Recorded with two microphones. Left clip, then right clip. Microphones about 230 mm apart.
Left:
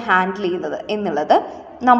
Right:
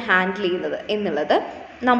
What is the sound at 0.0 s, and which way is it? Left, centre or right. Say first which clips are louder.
A woman's voice: left 2 dB; left.